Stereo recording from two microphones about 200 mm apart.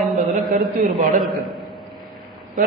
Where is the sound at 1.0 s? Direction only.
40° right (ahead or behind).